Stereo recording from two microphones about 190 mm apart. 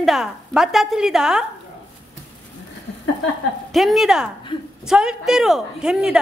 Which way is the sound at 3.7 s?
Centre (ahead or behind).